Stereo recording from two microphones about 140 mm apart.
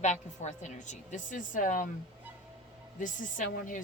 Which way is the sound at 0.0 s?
55° left (ahead or behind).